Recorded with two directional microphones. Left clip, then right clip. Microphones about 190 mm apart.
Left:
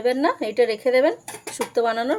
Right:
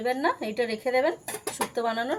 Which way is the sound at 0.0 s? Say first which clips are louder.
Left 5 dB; 55° left (ahead or behind).